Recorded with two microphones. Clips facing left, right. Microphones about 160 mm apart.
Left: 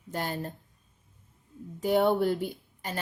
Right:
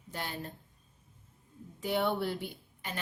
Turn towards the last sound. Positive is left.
turn(degrees=40)  # may be behind; listen again after turning